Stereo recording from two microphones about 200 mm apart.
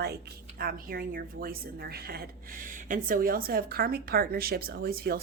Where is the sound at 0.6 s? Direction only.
45° right (ahead or behind).